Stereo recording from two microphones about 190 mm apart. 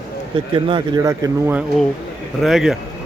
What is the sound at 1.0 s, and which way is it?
Speech, 15° right (ahead or behind).